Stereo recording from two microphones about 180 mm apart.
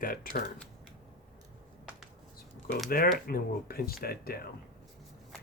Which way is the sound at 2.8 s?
55° left (ahead or behind).